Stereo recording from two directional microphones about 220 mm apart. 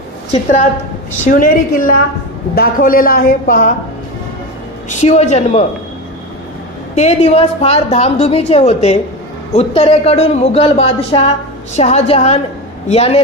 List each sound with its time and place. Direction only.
0.3 s a woman's voice: 30° left (ahead or behind)
4.8 s a woman's voice: 30° left (ahead or behind)
7.0 s speech: 30° left (ahead or behind)